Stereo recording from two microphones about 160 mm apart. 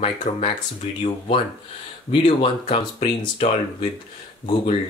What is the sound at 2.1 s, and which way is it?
Speech, 35° left (ahead or behind).